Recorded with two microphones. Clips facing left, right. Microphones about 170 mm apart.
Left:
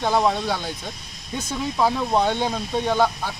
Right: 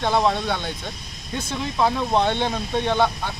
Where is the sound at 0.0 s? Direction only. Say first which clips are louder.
Even; 5° left (ahead or behind).